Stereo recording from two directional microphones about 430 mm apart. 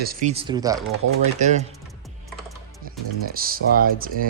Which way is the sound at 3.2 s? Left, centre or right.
Centre.